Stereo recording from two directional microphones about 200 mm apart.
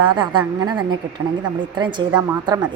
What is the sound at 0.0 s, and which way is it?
A woman's voice, 25° right (ahead or behind).